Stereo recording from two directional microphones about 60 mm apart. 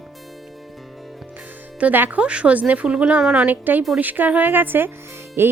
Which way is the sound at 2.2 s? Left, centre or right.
Centre.